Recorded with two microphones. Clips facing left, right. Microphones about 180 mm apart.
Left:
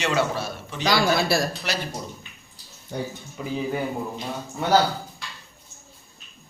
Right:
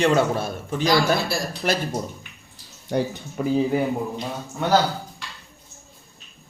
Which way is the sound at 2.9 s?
80° right.